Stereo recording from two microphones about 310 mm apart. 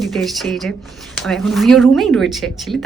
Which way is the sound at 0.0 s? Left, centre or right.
Centre.